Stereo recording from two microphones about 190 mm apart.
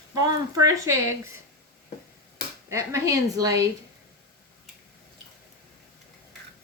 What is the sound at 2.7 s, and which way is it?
A woman's voice, 15° right (ahead or behind).